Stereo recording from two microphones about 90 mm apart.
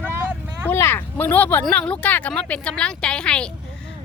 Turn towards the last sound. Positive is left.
turn(degrees=10)  # may be behind; listen again after turning